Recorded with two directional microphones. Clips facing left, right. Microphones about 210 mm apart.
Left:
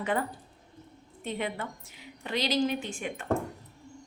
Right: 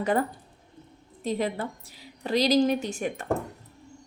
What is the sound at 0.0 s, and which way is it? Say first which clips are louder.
A woman's voice: right 5 dB; 40° right (ahead or behind).